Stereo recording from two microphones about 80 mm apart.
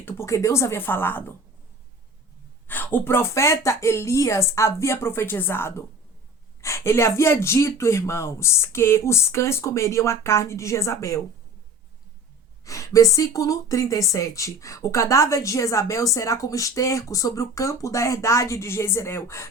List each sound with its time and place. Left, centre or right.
0.0 s speech: left
2.6 s speech: left
12.6 s speech: left